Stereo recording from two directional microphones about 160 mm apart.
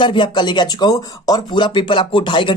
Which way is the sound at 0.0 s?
30° left (ahead or behind).